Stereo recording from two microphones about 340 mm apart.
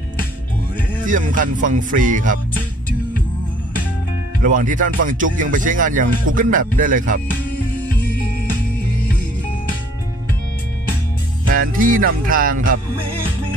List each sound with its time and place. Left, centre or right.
1.0 s music: right
4.4 s music: right
11.5 s music: right